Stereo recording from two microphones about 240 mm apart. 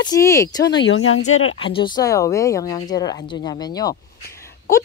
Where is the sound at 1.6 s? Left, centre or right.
Left.